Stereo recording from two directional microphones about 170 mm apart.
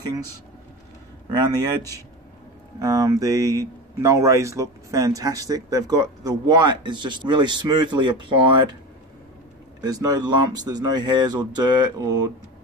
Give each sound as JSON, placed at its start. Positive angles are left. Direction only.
{"t": 2.8, "sound": "speech", "side_deg": -20}
{"t": 9.8, "sound": "speech", "side_deg": -20}